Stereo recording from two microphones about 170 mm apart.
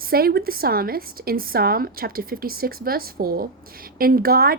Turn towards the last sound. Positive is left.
turn(degrees=-65)  # may be behind; listen again after turning